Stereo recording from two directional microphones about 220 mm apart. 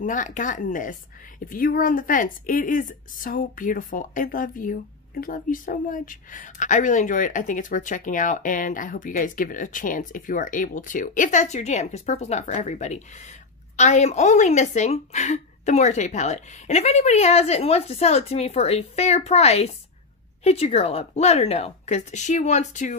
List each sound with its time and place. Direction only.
0.0 s a woman's voice: 35° left (ahead or behind)